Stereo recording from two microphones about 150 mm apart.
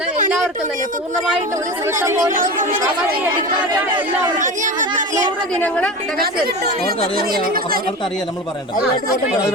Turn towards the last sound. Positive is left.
turn(degrees=-80)